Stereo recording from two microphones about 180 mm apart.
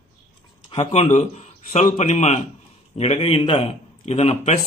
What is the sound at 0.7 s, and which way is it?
Speech, 30° left (ahead or behind).